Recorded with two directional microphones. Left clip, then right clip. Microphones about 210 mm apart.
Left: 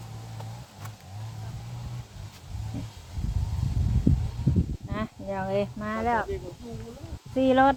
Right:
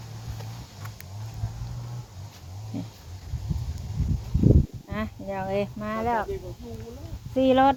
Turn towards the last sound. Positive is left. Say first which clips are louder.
# right 1 dB
turn(degrees=5)  # may be behind; listen again after turning